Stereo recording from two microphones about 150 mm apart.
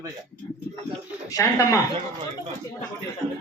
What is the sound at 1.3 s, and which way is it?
Speech, 20° left (ahead or behind).